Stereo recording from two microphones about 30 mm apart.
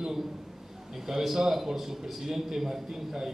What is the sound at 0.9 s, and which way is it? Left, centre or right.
A man's voice, centre.